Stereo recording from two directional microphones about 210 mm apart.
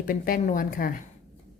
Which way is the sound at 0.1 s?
40° left (ahead or behind).